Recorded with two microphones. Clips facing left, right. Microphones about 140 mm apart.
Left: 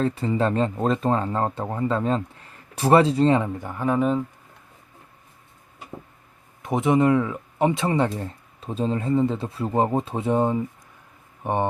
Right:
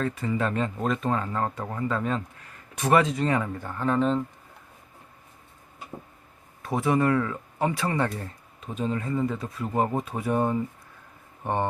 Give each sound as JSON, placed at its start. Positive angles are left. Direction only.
{"t": 0.0, "sound": "speech", "side_deg": 30}
{"t": 6.6, "sound": "speech", "side_deg": 20}